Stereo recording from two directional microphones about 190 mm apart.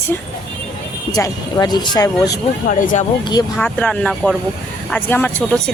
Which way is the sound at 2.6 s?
45° left (ahead or behind).